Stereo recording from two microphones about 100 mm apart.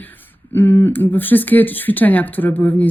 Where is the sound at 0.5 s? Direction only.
25° left (ahead or behind).